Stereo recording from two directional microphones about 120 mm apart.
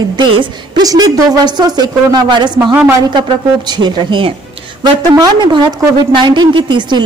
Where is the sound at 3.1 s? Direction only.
40° right (ahead or behind).